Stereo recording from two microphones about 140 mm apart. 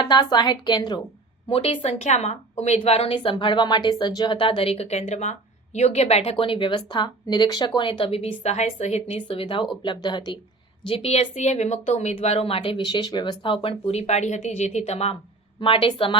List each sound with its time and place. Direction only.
0.0 s a woman's voice: 30° left (ahead or behind)
10.8 s a woman's voice: 45° left (ahead or behind)
15.6 s a woman's voice: 40° left (ahead or behind)